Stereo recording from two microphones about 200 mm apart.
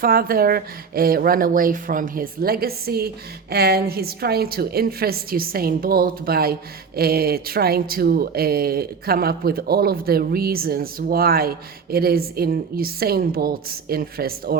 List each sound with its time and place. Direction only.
0.0 s a woman's voice: 45° right (ahead or behind)